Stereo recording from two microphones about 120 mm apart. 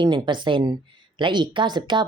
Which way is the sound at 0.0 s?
40° right (ahead or behind).